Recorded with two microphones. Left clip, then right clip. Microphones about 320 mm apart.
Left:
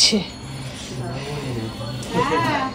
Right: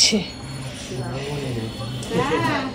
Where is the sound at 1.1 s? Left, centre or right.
Centre.